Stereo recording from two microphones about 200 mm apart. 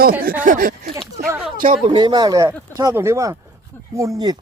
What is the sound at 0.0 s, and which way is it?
Speech, 45° right (ahead or behind).